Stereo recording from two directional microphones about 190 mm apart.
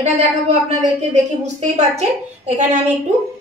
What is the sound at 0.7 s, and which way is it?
A woman's voice, 35° right (ahead or behind).